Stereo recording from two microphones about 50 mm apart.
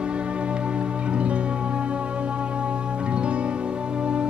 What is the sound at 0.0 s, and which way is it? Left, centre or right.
Music, right.